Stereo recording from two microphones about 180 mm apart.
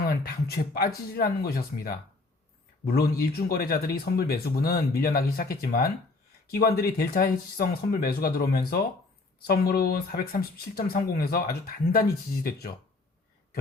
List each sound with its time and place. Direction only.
0.0 s speech: 60° left (ahead or behind)